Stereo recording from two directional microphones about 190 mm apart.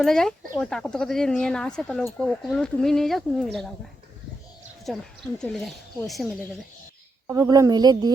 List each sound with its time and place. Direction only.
0.0 s speech: centre (ahead or behind)
4.9 s speech: centre (ahead or behind)
7.3 s a woman's voice: 15° right (ahead or behind)